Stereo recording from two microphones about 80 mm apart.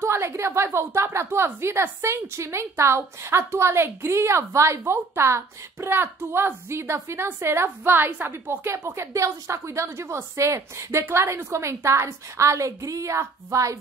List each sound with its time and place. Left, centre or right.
0.0 s a woman's voice: right